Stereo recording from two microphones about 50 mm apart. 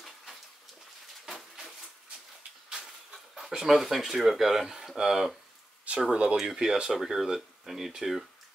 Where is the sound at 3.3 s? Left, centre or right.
Centre.